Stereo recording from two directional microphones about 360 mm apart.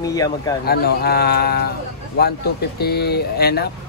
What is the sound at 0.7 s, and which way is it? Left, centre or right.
Speech, left.